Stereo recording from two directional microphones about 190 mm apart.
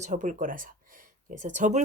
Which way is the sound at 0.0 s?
40° right (ahead or behind).